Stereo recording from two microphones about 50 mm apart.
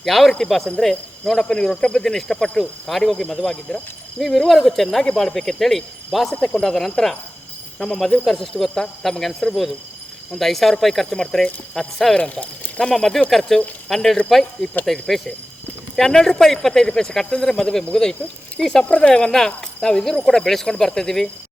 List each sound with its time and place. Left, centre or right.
0.0 s speech: centre
12.1 s speech: left
12.9 s speech: centre
16.0 s speech: centre
18.9 s speech: left